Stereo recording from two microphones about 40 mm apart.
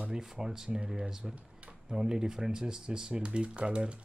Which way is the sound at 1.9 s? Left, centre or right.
Centre.